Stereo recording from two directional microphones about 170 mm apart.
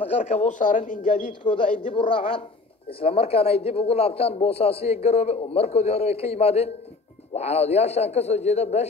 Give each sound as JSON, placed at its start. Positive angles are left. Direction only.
{"t": 0.0, "sound": "a man's voice", "side_deg": 40}
{"t": 2.0, "sound": "speech", "side_deg": 30}